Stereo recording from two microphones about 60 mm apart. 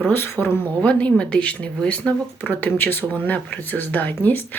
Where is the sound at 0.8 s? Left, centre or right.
Left.